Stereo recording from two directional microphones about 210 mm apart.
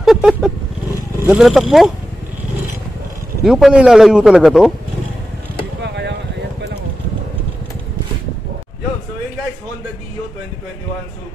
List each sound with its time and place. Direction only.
0.0 s vehicle: centre (ahead or behind)
1.2 s a man's voice: 5° right (ahead or behind)
3.4 s a man's voice: centre (ahead or behind)
5.8 s a sound: 55° right (ahead or behind)